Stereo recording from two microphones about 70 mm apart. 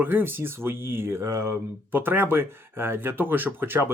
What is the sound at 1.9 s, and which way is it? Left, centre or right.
Speech, right.